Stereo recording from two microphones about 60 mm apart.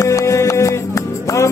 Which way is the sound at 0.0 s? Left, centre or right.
Left.